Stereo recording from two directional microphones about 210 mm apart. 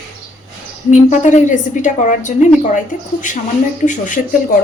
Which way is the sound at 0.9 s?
35° left (ahead or behind).